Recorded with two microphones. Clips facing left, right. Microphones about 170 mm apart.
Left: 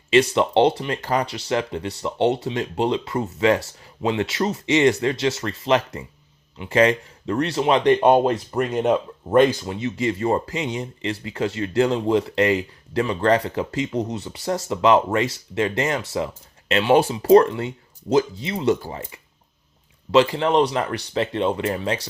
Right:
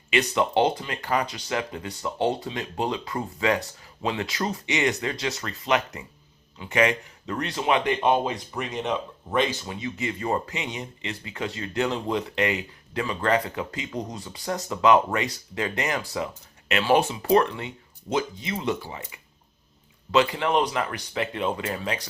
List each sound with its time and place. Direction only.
0.1 s speech: 30° left (ahead or behind)
8.0 s speech: 55° left (ahead or behind)
9.6 s speech: 30° left (ahead or behind)
18.8 s speech: 45° left (ahead or behind)
20.1 s speech: 30° left (ahead or behind)